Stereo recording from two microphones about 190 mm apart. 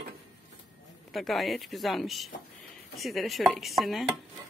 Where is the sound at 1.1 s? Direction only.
Centre (ahead or behind).